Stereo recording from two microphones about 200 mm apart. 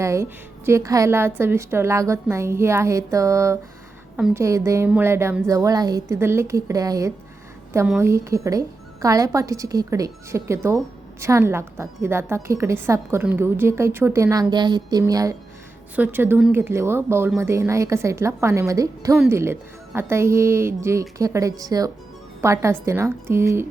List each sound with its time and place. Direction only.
0.0 s a woman's voice: 15° right (ahead or behind)